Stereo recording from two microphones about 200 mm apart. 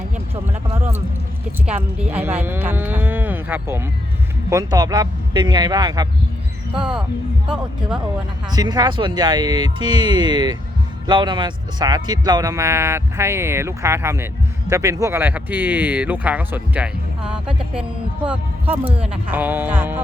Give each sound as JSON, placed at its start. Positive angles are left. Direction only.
{"t": 1.6, "sound": "speech", "side_deg": -5}
{"t": 6.7, "sound": "speech", "side_deg": -5}
{"t": 8.4, "sound": "speech", "side_deg": -20}